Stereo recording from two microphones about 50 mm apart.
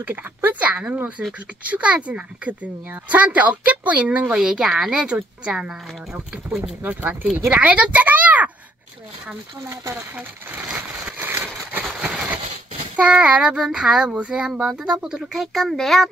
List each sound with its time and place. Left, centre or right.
0.0 s speech: right
4.4 s speech: centre
6.8 s speech: right
7.5 s a woman's voice: right
10.8 s a sound: right
11.8 s a sound: centre
12.9 s speech: right
15.3 s a child's voice: centre